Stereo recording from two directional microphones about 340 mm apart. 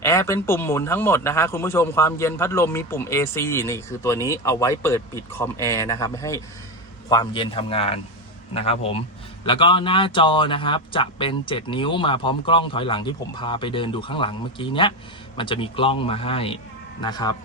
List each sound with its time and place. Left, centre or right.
0.0 s speech: centre